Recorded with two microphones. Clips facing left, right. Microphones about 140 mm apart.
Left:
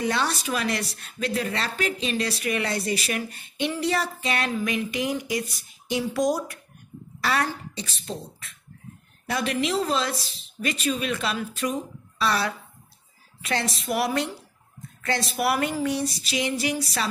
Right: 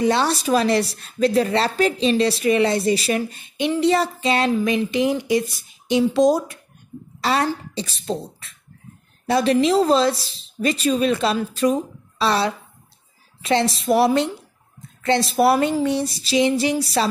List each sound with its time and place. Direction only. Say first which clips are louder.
0.0 s a woman's voice: right 7 dB; 30° right (ahead or behind)